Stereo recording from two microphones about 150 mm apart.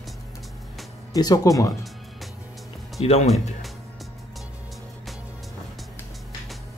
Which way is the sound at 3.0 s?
40° left (ahead or behind).